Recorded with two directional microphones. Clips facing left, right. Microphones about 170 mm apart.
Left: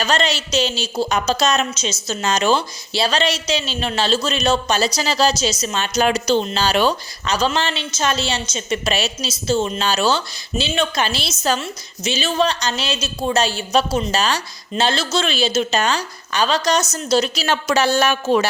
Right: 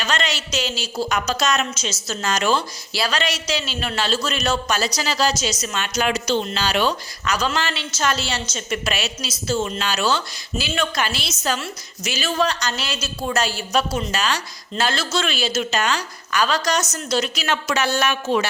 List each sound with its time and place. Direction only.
0.0 s a woman's voice: 30° left (ahead or behind)